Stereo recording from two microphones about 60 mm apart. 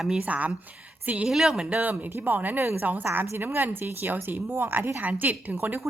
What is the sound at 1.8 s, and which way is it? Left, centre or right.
A woman's voice, right.